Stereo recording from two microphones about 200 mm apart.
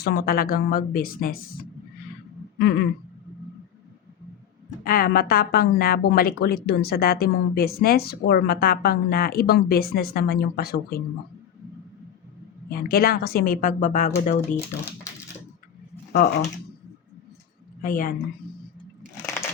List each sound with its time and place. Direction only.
0.0 s a woman's voice: 50° left (ahead or behind)
2.6 s a sound: 55° left (ahead or behind)
4.8 s a woman's voice: 45° left (ahead or behind)
12.7 s a woman's voice: 50° left (ahead or behind)
16.1 s a woman's voice: 45° left (ahead or behind)
17.8 s speech: 40° left (ahead or behind)